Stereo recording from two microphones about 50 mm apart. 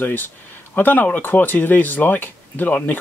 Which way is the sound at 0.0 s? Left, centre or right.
Left.